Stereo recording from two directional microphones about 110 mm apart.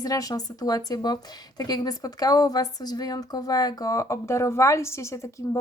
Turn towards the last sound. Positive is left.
turn(degrees=30)  # may be behind; listen again after turning